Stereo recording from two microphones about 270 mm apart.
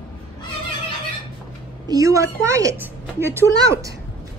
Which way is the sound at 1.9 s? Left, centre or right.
Centre.